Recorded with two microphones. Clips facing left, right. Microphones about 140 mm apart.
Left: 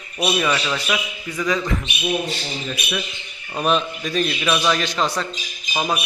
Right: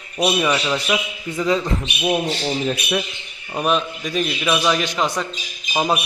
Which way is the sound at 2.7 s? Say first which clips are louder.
Right 5 dB; 45° right (ahead or behind).